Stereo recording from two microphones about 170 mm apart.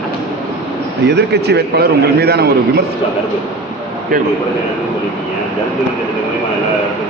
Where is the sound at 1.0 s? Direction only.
80° right.